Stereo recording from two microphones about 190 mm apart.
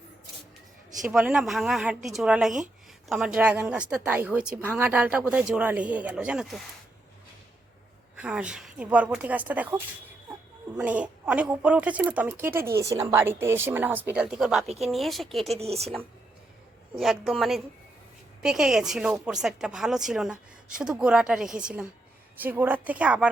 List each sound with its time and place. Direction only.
1.1 s speech: 5° right (ahead or behind)
8.2 s speech: 5° right (ahead or behind)
15.5 s a woman's voice: 30° right (ahead or behind)
17.0 s speech: centre (ahead or behind)